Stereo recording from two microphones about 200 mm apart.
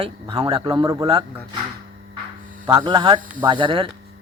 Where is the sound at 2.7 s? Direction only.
20° right (ahead or behind).